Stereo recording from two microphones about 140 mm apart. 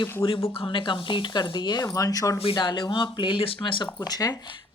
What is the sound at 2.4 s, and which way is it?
Speech, 35° left (ahead or behind).